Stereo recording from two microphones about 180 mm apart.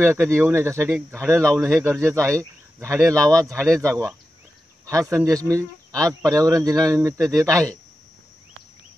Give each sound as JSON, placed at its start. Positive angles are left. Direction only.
{"t": 0.0, "sound": "a man's voice", "side_deg": -15}